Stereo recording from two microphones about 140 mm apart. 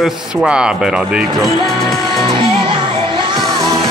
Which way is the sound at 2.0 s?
35° right (ahead or behind).